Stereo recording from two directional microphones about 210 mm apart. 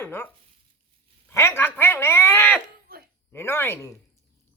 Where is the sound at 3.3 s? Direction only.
10° left (ahead or behind).